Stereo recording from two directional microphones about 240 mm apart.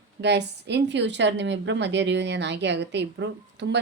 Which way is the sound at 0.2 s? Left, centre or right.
Right.